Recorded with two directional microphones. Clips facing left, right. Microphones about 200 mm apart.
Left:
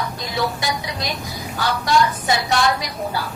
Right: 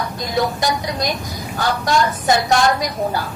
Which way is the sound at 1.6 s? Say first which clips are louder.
Right 1 dB; 45° right (ahead or behind).